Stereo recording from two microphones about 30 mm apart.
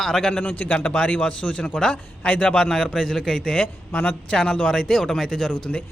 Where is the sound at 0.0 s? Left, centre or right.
Centre.